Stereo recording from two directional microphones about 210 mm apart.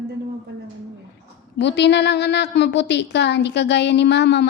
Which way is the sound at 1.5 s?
55° left (ahead or behind).